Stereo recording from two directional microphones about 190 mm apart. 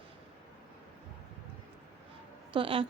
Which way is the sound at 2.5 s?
30° right (ahead or behind).